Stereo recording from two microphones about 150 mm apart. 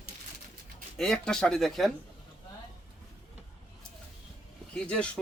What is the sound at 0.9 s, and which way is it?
Speech, 5° left (ahead or behind).